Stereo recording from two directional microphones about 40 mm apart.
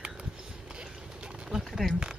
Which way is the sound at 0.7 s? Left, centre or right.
Right.